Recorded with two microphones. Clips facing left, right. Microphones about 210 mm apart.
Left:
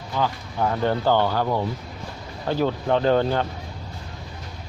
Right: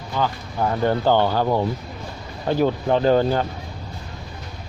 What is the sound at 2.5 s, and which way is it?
Speech, 15° right (ahead or behind).